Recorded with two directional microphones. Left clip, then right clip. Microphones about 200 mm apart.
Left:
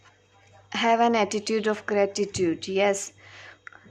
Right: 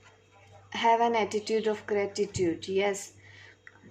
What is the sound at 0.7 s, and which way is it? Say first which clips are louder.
Speech: left 3 dB; 40° left (ahead or behind).